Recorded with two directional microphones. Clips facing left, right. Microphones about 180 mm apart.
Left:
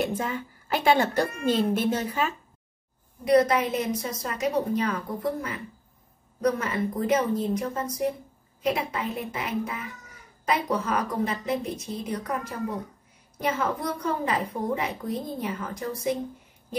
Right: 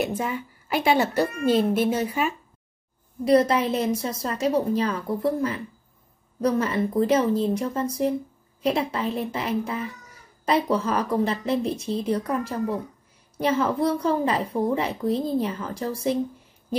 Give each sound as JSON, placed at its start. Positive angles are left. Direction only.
{"t": 0.0, "sound": "a woman's voice", "side_deg": -10}
{"t": 3.3, "sound": "a woman's voice", "side_deg": -30}
{"t": 13.6, "sound": "a woman's voice", "side_deg": -30}